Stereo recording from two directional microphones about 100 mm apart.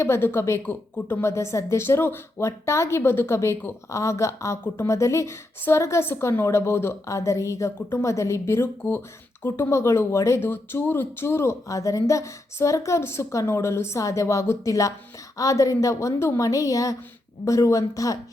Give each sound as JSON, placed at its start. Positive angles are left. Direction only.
{"t": 0.0, "sound": "a woman's voice", "side_deg": 25}